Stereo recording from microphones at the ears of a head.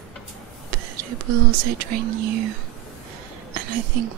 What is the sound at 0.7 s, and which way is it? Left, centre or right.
Speech, right.